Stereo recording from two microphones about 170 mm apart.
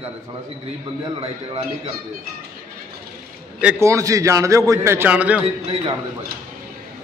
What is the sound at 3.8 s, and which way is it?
A man's voice, 20° right (ahead or behind).